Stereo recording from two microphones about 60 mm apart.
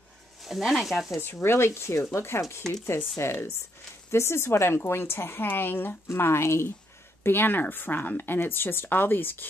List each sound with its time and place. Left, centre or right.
0.4 s speech: centre
1.2 s a woman's voice: left
6.0 s a woman's voice: left
7.2 s speech: left